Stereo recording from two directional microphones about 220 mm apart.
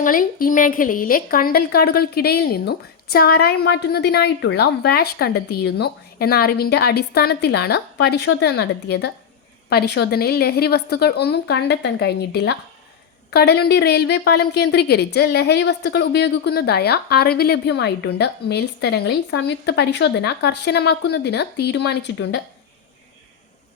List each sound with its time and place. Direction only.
0.0 s a woman's voice: 40° left (ahead or behind)